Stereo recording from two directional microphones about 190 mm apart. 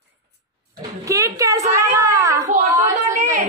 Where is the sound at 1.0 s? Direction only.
15° right (ahead or behind).